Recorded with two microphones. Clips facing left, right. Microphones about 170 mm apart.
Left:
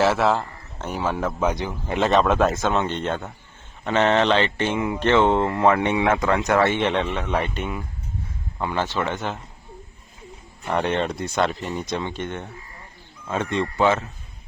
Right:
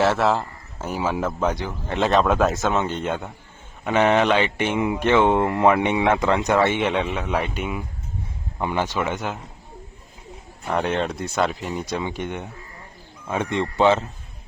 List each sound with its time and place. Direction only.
0.0 s a man's voice: centre (ahead or behind)
1.5 s speech: 15° left (ahead or behind)
2.0 s speech: centre (ahead or behind)
10.7 s speech: 5° right (ahead or behind); by 14.1 s 25° right (ahead or behind)